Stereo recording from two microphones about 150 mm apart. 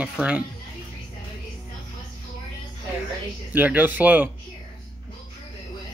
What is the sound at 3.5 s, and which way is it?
Speech, 10° right (ahead or behind).